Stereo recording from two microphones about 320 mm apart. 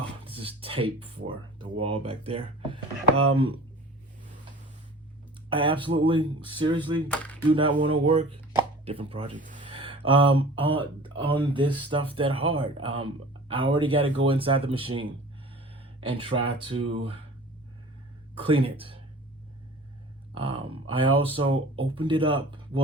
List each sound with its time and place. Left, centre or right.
0.3 s a sound: centre
1.8 s speech: centre
5.5 s speech: centre
7.1 s a sound: centre
7.5 s speech: centre
18.3 s speech: centre
20.3 s speech: centre